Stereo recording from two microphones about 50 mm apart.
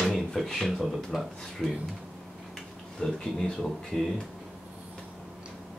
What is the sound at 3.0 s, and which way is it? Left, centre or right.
Speech, centre.